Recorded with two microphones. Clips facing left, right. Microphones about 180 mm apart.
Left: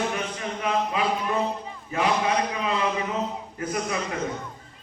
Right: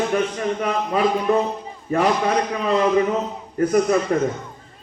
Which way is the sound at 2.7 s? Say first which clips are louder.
Right 12 dB; 45° right (ahead or behind).